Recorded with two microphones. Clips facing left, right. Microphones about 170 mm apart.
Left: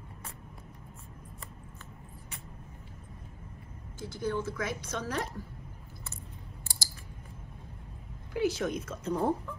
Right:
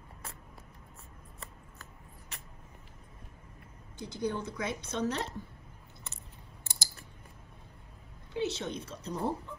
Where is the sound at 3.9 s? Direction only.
20° right (ahead or behind).